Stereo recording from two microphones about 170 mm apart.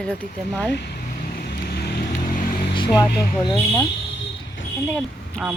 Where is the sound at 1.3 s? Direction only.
70° left (ahead or behind).